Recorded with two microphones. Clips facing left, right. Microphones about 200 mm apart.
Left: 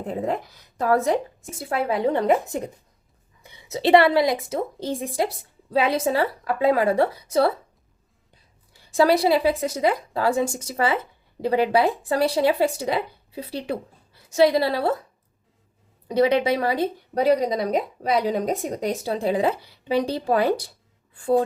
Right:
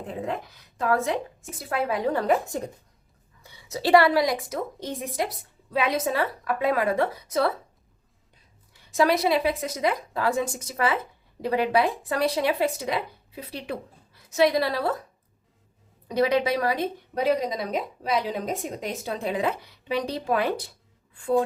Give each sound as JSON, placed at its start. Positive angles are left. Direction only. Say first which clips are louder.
{"t": 0.1, "sound": "a woman's voice", "louder": "left 5 dB", "side_deg": 35}
{"t": 8.7, "sound": "a woman's voice", "louder": "left 4 dB", "side_deg": 30}
{"t": 16.0, "sound": "a woman's voice", "louder": "left 3 dB", "side_deg": 30}